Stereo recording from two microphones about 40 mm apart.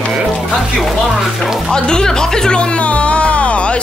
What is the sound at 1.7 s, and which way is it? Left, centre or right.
Speech, centre.